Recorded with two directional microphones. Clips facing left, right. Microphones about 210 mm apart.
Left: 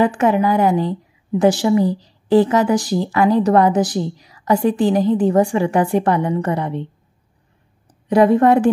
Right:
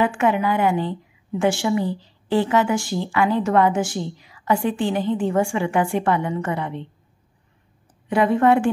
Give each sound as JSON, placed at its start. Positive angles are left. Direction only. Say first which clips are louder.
{"t": 0.0, "sound": "speech", "louder": "left 4 dB", "side_deg": 35}
{"t": 8.1, "sound": "speech", "louder": "left 5 dB", "side_deg": 40}